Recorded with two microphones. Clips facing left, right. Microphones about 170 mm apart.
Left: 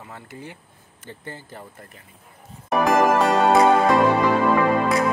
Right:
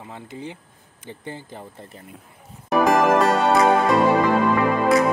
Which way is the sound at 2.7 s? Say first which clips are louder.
Right 1 dB; centre (ahead or behind).